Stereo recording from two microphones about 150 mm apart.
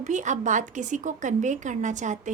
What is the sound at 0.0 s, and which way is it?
A woman's voice, 55° right (ahead or behind).